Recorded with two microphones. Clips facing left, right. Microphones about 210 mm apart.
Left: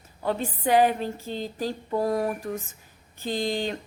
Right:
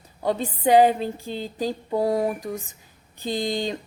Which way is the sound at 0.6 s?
20° right (ahead or behind).